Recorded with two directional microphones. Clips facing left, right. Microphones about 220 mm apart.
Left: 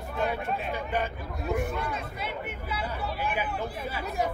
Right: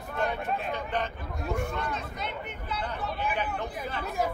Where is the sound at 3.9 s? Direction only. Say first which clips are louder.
Right 1 dB; 5° left (ahead or behind).